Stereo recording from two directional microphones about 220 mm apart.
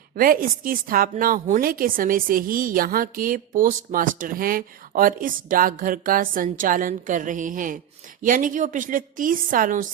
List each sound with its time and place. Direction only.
0.2 s a woman's voice: 40° right (ahead or behind)